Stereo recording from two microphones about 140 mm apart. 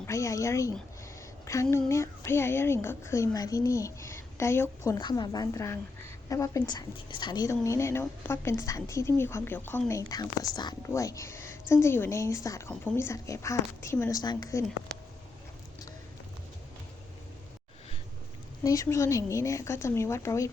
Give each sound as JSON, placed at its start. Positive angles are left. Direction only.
{"t": 0.0, "sound": "a woman's voice", "side_deg": 20}
{"t": 4.9, "sound": "a woman's voice", "side_deg": 30}
{"t": 18.6, "sound": "a woman's voice", "side_deg": 25}